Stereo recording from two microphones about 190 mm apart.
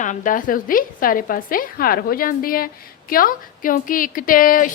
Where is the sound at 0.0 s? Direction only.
45° left (ahead or behind).